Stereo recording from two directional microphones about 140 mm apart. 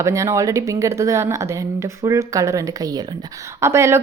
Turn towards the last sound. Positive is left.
turn(degrees=-20)  # may be behind; listen again after turning